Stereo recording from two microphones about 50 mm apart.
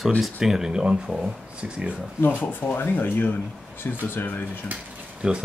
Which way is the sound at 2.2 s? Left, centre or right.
Left.